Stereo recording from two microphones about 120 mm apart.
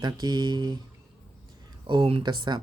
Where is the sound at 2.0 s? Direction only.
45° right (ahead or behind).